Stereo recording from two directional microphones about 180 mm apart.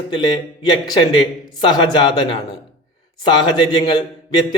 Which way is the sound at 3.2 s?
25° left (ahead or behind).